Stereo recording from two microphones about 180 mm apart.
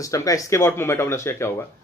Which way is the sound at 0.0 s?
20° left (ahead or behind).